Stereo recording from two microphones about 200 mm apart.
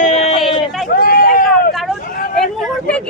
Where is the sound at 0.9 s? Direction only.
45° left (ahead or behind).